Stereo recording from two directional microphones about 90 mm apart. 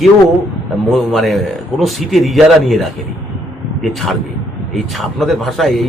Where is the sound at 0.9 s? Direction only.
Centre (ahead or behind).